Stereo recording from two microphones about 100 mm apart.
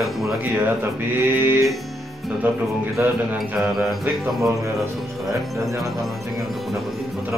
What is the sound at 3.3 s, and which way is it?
Mantra, centre (ahead or behind).